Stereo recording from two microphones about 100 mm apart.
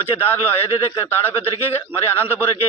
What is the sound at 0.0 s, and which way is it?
Speech, 20° left (ahead or behind).